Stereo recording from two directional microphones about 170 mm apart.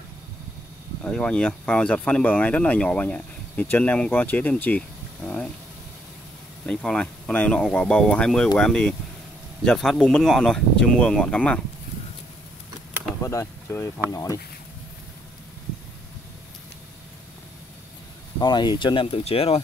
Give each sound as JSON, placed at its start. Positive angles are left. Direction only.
{"t": 1.0, "sound": "speech", "side_deg": 5}
{"t": 6.6, "sound": "speech", "side_deg": 5}
{"t": 13.2, "sound": "speech", "side_deg": 20}
{"t": 18.4, "sound": "speech", "side_deg": 25}